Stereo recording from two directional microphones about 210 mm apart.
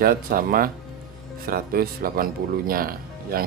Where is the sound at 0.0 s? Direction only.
45° right (ahead or behind).